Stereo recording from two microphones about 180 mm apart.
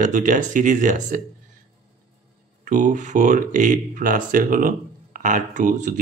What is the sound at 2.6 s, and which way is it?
Speech, 45° right (ahead or behind).